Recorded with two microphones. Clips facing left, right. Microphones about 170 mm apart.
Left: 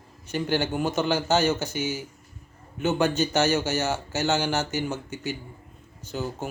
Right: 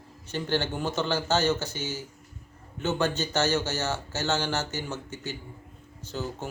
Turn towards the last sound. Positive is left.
turn(degrees=15)  # may be behind; listen again after turning